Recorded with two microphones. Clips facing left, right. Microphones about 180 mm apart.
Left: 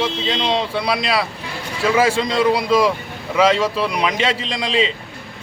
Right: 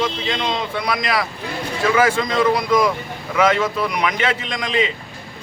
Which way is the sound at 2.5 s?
30° left (ahead or behind).